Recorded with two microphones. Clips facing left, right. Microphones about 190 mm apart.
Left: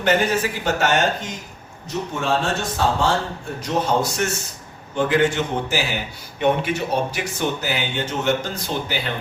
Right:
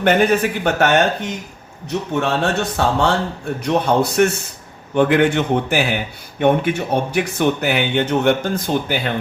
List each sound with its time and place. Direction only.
0.0 s speech: 55° right (ahead or behind)